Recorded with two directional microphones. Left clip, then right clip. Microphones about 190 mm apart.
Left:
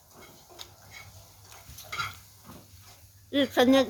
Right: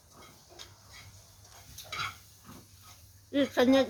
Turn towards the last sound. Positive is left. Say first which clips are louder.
# left 3 dB
turn(degrees=25)  # may be behind; listen again after turning